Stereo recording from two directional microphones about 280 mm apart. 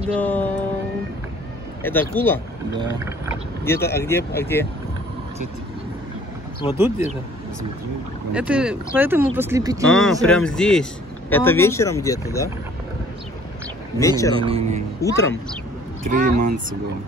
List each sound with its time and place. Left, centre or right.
0.2 s speech: centre
1.8 s a man's voice: centre
2.8 s speech: centre
3.6 s a man's voice: centre
6.7 s speech: centre
8.3 s speech: centre
9.8 s a man's voice: centre
13.9 s a man's voice: centre
14.3 s speech: centre
15.0 s a man's voice: centre
16.3 s speech: right